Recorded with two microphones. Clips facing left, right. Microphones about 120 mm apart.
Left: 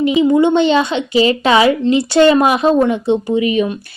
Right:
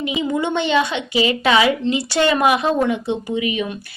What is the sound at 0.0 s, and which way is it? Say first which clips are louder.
A woman's voice: left 10 dB; 30° left (ahead or behind).